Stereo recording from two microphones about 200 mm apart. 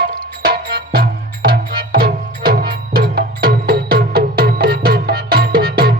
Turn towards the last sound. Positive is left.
turn(degrees=-50)  # may be behind; listen again after turning